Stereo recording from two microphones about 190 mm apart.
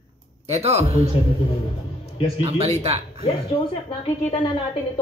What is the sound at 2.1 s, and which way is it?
Music, 25° left (ahead or behind).